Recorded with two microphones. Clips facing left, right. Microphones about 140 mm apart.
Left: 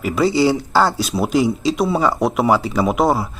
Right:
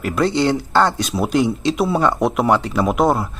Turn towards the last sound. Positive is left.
turn(degrees=0)  # may be behind; listen again after turning